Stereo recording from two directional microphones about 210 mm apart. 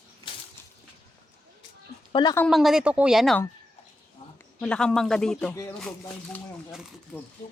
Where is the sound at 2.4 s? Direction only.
Centre (ahead or behind).